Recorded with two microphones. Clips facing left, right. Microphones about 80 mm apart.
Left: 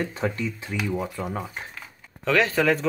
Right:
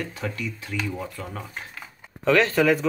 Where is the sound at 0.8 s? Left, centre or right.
Centre.